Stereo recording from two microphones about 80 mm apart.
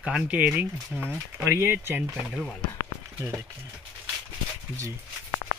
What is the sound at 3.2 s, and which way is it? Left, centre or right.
Speech, right.